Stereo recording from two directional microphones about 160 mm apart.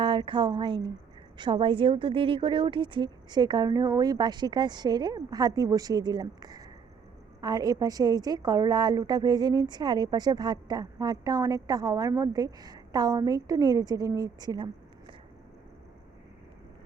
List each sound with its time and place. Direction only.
0.0 s a woman's voice: 30° right (ahead or behind)